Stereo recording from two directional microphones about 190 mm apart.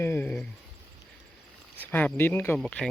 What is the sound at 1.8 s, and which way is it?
Speech, 10° left (ahead or behind).